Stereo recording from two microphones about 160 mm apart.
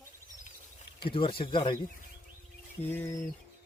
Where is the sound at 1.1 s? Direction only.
35° left (ahead or behind).